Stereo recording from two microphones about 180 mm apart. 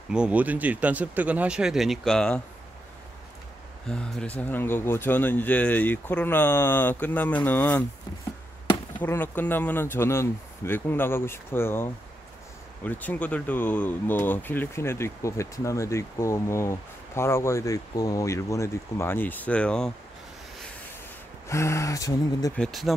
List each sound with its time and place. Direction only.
0.1 s speech: 5° right (ahead or behind)
3.9 s speech: 5° left (ahead or behind)
9.0 s speech: 10° left (ahead or behind)
21.5 s speech: 15° left (ahead or behind)
22.6 s speech: centre (ahead or behind)